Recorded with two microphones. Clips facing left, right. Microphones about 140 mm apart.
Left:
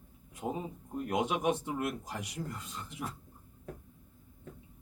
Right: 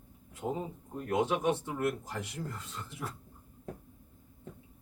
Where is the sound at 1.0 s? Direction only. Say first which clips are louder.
Right 1 dB; 15° left (ahead or behind).